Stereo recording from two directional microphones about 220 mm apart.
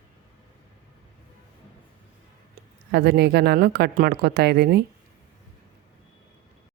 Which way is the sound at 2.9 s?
50° right (ahead or behind).